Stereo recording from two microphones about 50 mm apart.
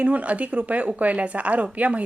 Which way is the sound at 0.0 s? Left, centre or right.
Right.